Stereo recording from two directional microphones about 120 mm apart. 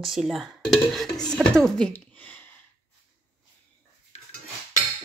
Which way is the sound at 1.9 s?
15° left (ahead or behind).